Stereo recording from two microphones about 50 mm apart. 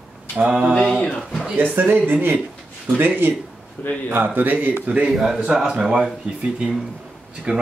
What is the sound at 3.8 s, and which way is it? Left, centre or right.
Speech, left.